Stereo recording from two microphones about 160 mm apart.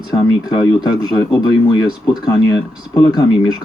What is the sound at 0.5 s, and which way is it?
Speech, 30° left (ahead or behind).